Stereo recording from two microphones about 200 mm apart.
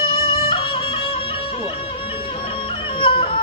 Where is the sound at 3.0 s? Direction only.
25° left (ahead or behind).